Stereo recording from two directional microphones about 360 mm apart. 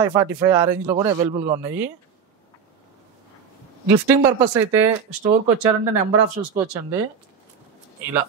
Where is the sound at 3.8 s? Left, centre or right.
Centre.